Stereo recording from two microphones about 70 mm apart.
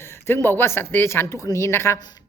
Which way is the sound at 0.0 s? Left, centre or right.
Left.